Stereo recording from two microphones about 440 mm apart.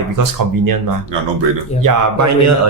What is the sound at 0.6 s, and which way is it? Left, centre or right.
Speech, right.